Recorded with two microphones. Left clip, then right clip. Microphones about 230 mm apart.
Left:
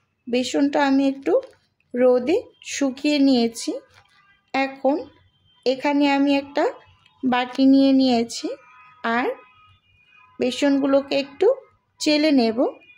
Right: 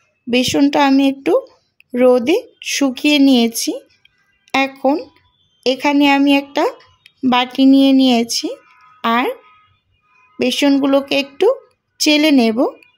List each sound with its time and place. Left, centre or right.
0.3 s a woman's voice: right